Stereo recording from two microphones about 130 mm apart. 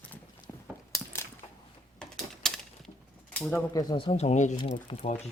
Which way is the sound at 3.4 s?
10° left (ahead or behind).